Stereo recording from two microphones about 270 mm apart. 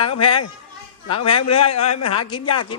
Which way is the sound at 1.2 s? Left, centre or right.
Left.